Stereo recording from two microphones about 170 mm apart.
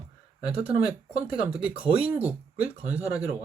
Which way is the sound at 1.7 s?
35° right (ahead or behind).